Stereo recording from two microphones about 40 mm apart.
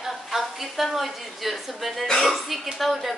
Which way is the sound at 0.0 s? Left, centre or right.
Centre.